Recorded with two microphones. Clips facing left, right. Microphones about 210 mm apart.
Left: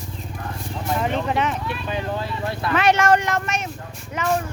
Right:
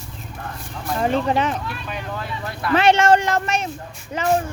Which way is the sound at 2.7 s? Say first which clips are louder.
Right 3 dB; 25° right (ahead or behind).